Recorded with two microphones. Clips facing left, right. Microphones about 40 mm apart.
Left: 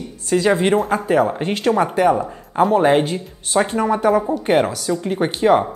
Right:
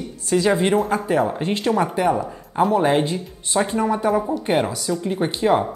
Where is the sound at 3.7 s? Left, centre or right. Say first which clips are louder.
Left 2 dB; left.